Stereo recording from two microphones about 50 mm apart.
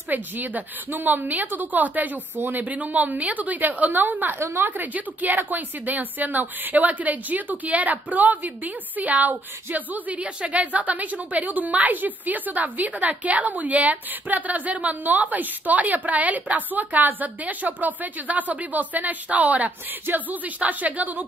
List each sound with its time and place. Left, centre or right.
0.1 s a woman's voice: right